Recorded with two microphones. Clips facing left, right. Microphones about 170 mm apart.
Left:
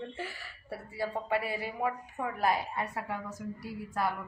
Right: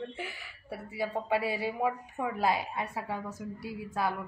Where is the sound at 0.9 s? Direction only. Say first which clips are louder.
Right 1 dB; 20° right (ahead or behind).